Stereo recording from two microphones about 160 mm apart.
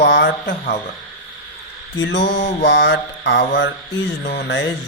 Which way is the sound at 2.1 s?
90° left.